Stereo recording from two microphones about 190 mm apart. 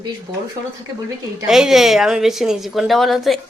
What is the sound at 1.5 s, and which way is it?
A woman's voice, centre (ahead or behind).